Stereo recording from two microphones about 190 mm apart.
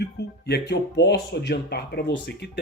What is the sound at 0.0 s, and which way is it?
Speech, 60° left (ahead or behind).